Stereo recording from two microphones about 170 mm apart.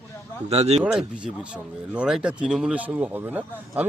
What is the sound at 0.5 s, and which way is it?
Speech, 40° right (ahead or behind).